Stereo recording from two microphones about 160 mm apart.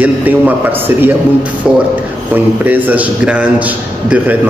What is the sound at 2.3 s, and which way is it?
A man's voice, 10° right (ahead or behind).